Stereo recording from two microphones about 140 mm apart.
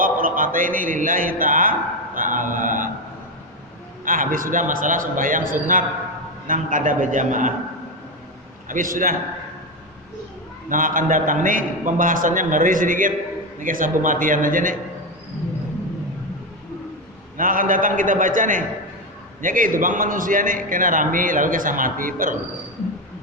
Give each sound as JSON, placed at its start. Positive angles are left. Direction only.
{"t": 0.0, "sound": "speech", "side_deg": -75}
{"t": 2.1, "sound": "a sound", "side_deg": -70}
{"t": 4.0, "sound": "a man's voice", "side_deg": -80}
{"t": 8.6, "sound": "a man's voice", "side_deg": -75}
{"t": 10.7, "sound": "a man's voice", "side_deg": -70}
{"t": 17.3, "sound": "a man's voice", "side_deg": -80}